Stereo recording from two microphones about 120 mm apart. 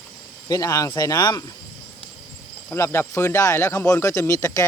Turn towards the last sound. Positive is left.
turn(degrees=30)  # may be behind; listen again after turning